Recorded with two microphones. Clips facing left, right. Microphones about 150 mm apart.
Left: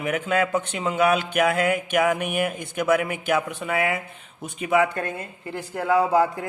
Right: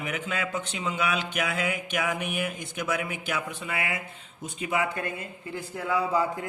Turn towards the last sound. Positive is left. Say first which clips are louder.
# left 6 dB
turn(degrees=75)  # may be behind; listen again after turning